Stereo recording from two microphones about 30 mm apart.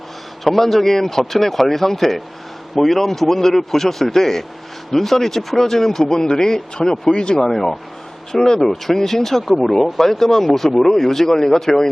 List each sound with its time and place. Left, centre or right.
0.4 s speech: centre; by 7.3 s left
7.4 s speech: centre